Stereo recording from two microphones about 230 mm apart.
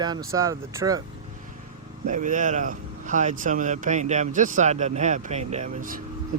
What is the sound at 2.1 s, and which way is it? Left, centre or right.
Speech, right.